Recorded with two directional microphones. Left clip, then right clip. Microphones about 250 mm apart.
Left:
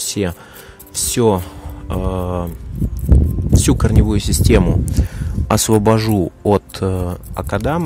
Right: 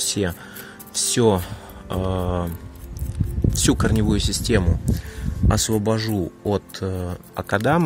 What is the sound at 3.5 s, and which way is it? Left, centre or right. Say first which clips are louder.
Speech: left 4 dB; centre.